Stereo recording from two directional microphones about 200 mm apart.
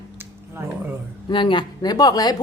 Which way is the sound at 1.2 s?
25° left (ahead or behind).